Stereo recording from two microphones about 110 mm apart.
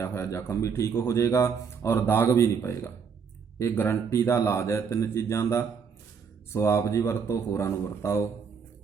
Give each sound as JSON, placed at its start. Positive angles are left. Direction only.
{"t": 0.0, "sound": "speech", "side_deg": 25}